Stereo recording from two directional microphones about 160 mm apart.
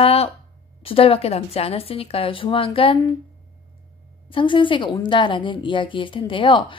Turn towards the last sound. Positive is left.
turn(degrees=30)  # may be behind; listen again after turning